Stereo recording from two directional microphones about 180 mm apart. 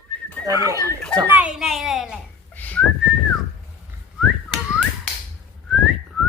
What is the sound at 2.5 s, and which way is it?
Whistling, 10° left (ahead or behind).